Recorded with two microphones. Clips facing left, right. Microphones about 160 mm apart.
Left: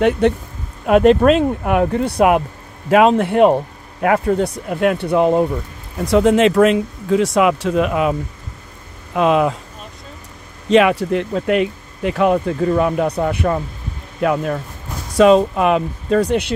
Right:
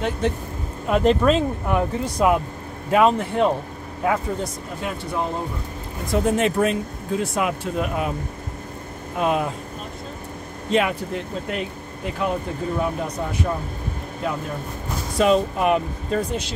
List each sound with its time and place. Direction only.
0.2 s speech: 65° left (ahead or behind)
2.9 s speech: 90° left; by 5.4 s 75° left (ahead or behind)
6.0 s speech: 90° left
10.7 s speech: 90° left; by 14.6 s 75° left (ahead or behind)
15.1 s speech: 90° left; by 16.5 s 70° left (ahead or behind)